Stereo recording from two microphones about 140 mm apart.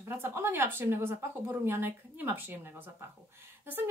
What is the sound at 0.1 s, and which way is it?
A woman's voice, 15° right (ahead or behind).